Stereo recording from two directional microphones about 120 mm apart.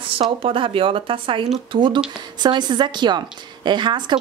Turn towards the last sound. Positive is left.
turn(degrees=-40)  # may be behind; listen again after turning